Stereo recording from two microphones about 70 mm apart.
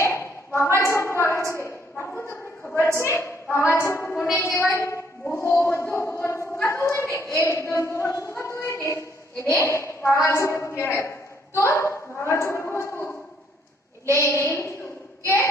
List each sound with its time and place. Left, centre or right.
0.0 s a sound: left
0.7 s a woman's voice: left
4.5 s a woman's voice: left
14.1 s a woman's voice: left